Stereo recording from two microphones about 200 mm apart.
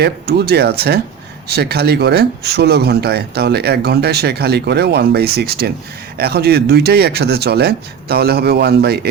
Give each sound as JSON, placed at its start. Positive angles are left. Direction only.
{"t": 0.0, "sound": "speech", "side_deg": -55}